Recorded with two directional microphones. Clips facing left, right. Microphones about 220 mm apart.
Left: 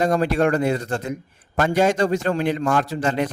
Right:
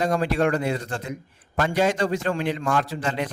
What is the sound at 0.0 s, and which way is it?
Speech, 45° left (ahead or behind).